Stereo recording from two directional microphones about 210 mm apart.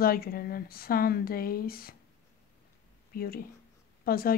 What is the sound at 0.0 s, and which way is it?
A woman's voice, 45° left (ahead or behind).